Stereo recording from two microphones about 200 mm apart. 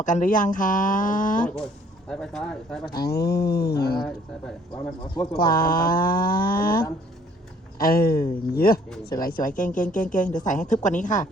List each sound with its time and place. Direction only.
0.0 s speech: 40° left (ahead or behind)
2.0 s speech: 5° left (ahead or behind)
2.9 s speech: 50° left (ahead or behind)
5.4 s speech: 45° left (ahead or behind)